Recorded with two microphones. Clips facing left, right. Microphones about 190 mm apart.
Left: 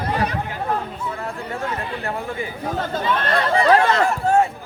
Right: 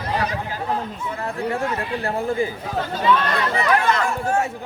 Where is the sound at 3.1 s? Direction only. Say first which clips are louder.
Right 3 dB; 50° left (ahead or behind).